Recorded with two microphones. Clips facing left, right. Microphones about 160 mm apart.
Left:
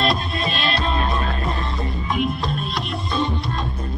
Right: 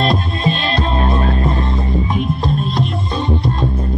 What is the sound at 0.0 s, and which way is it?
Music, 35° right (ahead or behind).